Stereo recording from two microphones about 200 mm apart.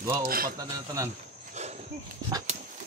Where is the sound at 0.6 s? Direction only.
15° right (ahead or behind).